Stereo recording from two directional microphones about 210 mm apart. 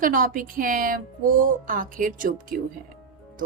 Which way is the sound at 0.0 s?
40° right (ahead or behind).